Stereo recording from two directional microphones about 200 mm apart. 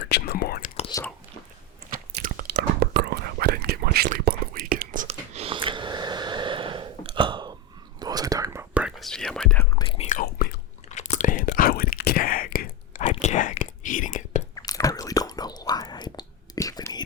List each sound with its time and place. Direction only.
0.1 s whispering: 50° left (ahead or behind)
0.8 s whispering: 20° left (ahead or behind)
1.9 s whispering: 45° right (ahead or behind); by 8.6 s 15° right (ahead or behind)
8.7 s whispering: 5° right (ahead or behind)
9.7 s whispering: 25° left (ahead or behind)
10.1 s whispering: 45° left (ahead or behind)
10.8 s whispering: 35° left (ahead or behind)
14.5 s whispering: 15° left (ahead or behind)